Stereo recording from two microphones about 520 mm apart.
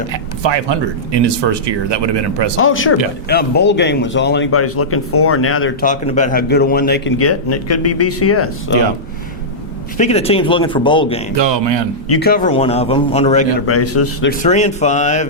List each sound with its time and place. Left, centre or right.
0.1 s speech: right
2.6 s speech: left
10.0 s a man's voice: centre
11.3 s speech: right
12.0 s a man's voice: left
13.7 s a man's voice: left